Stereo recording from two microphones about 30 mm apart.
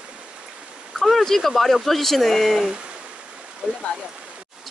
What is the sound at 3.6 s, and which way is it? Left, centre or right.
Speech, right.